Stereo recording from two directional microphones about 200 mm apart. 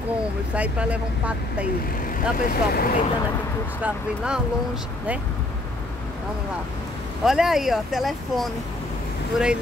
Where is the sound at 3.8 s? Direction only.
5° right (ahead or behind).